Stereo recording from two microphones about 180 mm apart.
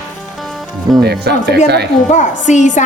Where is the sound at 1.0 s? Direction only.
65° right (ahead or behind).